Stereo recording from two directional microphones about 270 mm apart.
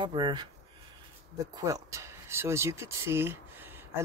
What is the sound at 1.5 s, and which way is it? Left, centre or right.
Speech, centre.